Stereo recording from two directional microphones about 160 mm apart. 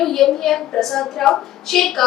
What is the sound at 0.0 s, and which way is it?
A woman's voice, centre (ahead or behind).